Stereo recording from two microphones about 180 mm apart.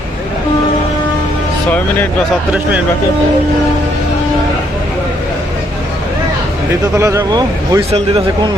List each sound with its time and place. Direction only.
6.9 s speech: 15° right (ahead or behind)